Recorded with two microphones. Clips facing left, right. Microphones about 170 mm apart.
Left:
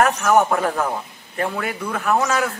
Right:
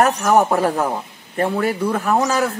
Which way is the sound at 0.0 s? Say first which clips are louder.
Right 1 dB; 35° right (ahead or behind).